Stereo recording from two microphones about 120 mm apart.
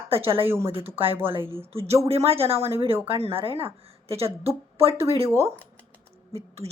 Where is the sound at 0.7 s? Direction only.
50° right (ahead or behind).